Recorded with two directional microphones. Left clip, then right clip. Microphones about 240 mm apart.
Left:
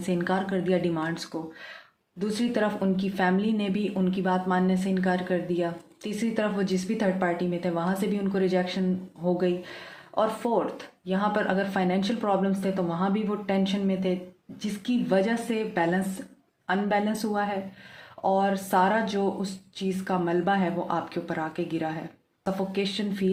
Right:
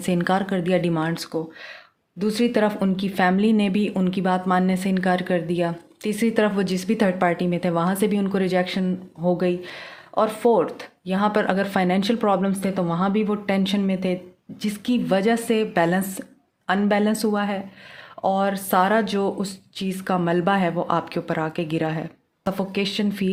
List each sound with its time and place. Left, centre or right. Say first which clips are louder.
0.0 s speech: right 5 dB; right